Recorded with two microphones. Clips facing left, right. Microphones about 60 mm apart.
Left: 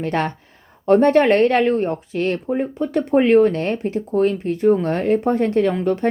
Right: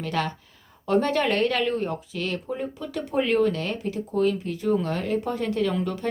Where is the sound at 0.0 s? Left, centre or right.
Left.